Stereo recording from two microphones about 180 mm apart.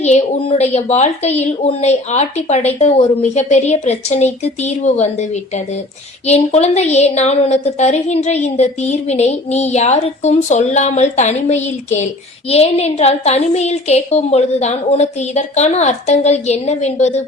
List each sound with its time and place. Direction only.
0.0 s a woman's voice: 40° left (ahead or behind)